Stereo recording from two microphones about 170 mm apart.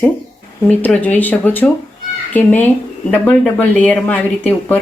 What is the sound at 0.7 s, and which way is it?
Speech, 10° left (ahead or behind).